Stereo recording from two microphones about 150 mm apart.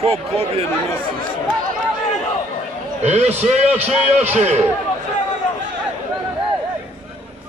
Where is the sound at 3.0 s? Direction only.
50° right (ahead or behind).